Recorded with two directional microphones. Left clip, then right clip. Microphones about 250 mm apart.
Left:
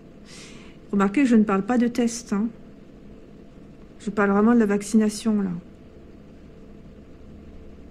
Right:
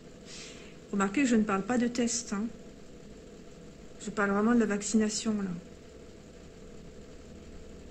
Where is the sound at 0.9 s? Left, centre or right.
Left.